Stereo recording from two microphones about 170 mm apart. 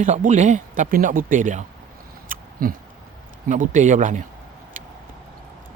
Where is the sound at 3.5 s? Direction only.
50° right (ahead or behind).